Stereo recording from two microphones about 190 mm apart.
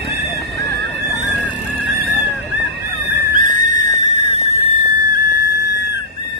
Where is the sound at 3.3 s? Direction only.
45° right (ahead or behind); by 5.2 s 25° right (ahead or behind).